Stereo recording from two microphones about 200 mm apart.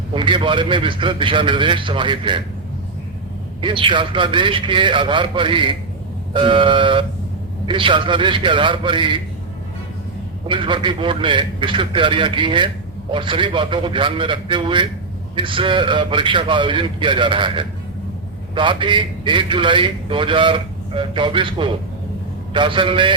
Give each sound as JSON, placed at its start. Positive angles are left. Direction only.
{"t": 0.1, "sound": "a man's voice", "side_deg": -25}
{"t": 3.6, "sound": "a man's voice", "side_deg": -25}
{"t": 10.4, "sound": "a man's voice", "side_deg": -25}